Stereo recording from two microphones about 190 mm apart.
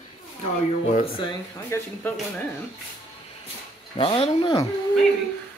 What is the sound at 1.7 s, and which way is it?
Speech, 15° left (ahead or behind).